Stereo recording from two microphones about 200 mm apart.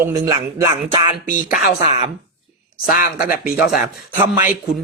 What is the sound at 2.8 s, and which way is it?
Speech, 40° left (ahead or behind).